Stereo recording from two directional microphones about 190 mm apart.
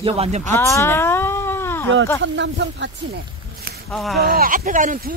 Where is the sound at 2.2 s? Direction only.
70° right (ahead or behind).